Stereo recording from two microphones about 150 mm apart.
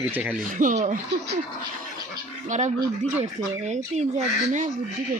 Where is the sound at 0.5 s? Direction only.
55° right (ahead or behind).